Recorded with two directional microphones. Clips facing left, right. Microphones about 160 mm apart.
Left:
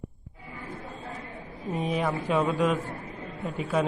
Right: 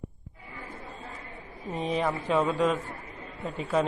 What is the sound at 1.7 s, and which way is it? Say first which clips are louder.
A man's voice: even; 5° left (ahead or behind).